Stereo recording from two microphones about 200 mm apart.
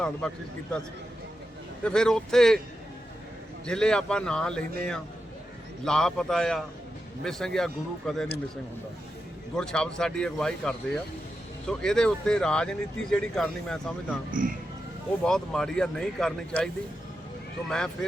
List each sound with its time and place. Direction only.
0.2 s speech: 5° left (ahead or behind)
1.8 s speech: 5° left (ahead or behind)
3.7 s speech: 5° left (ahead or behind)
9.6 s speech: 5° left (ahead or behind)
14.3 s a man's voice: 45° right (ahead or behind)
15.2 s speech: 5° left (ahead or behind)
17.7 s speech: 5° left (ahead or behind)